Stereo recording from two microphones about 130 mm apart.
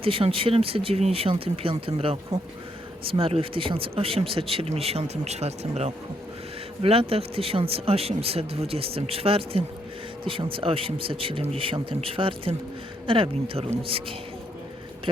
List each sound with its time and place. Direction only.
0.0 s speech: 45° right (ahead or behind)